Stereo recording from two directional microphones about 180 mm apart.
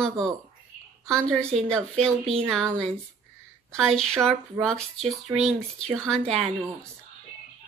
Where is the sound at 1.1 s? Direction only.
5° left (ahead or behind).